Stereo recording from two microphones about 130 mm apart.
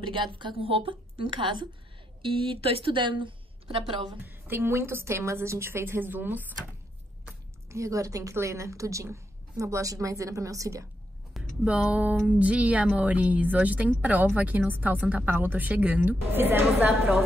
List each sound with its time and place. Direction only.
0.0 s a woman's voice: 40° right (ahead or behind)
4.2 s a woman's voice: 15° right (ahead or behind)
7.7 s a woman's voice: 25° right (ahead or behind)
11.6 s a woman's voice: 10° right (ahead or behind)